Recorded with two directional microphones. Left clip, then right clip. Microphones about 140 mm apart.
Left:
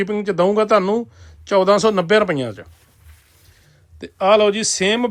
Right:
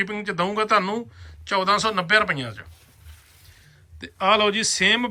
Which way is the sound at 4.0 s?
35° left (ahead or behind).